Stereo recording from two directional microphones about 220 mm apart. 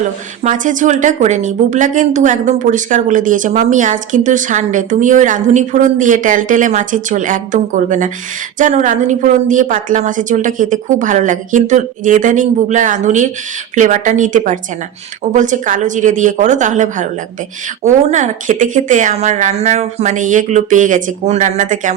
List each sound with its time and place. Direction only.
0.4 s a woman's voice: 35° right (ahead or behind)